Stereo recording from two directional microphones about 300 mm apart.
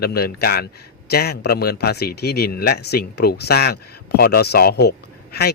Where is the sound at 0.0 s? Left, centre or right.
Left.